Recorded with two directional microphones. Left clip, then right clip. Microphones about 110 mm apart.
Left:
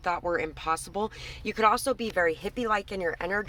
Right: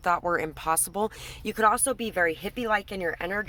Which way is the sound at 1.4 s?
25° right (ahead or behind).